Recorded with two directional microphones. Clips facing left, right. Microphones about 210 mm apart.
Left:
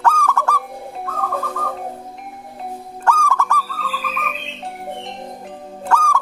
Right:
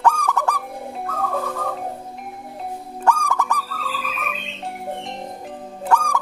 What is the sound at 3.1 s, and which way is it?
Owl, 15° right (ahead or behind).